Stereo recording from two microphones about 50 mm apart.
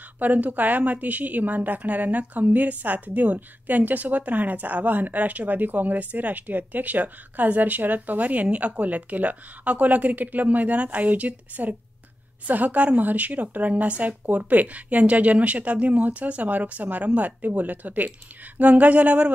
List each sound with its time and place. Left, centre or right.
0.2 s a woman's voice: right